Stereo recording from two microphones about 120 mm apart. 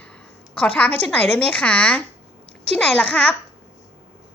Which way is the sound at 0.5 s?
10° left (ahead or behind).